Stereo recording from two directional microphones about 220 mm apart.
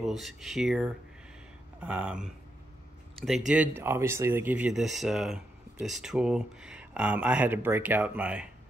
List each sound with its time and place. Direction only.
0.0 s speech: centre (ahead or behind)